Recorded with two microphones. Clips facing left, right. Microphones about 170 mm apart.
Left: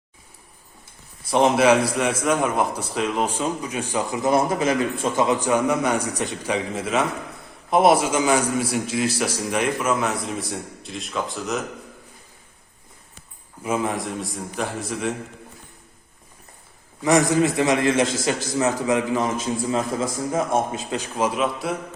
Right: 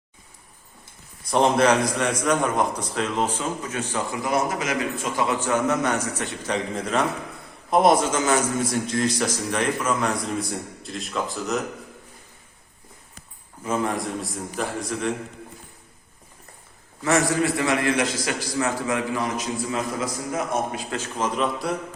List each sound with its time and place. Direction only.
1.3 s a man's voice: 5° left (ahead or behind)
4.3 s a man's voice: 30° left (ahead or behind); by 11.6 s centre (ahead or behind)
13.6 s a man's voice: 10° left (ahead or behind)
17.0 s a man's voice: 15° left (ahead or behind)
20.9 s a man's voice: 10° left (ahead or behind)